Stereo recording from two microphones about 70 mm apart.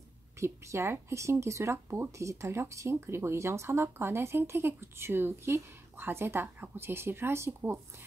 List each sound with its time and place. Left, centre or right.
0.4 s speech: right